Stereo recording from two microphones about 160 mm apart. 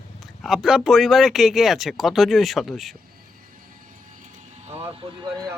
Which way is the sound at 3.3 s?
60° right (ahead or behind).